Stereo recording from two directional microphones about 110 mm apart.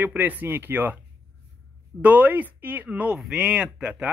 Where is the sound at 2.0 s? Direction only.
15° right (ahead or behind).